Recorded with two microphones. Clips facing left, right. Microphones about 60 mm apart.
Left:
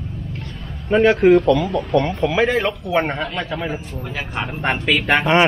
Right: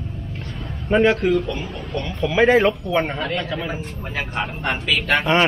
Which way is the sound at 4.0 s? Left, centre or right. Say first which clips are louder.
Even; right.